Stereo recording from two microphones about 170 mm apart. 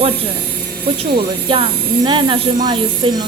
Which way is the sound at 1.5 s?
30° right (ahead or behind).